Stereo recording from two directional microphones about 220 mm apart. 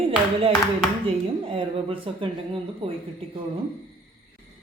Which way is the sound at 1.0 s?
25° right (ahead or behind).